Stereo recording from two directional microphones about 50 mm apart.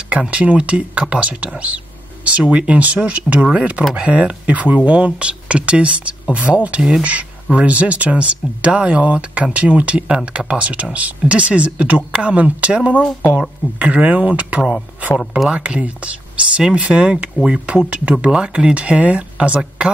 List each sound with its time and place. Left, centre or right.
0.3 s speech: right
15.1 s speech: centre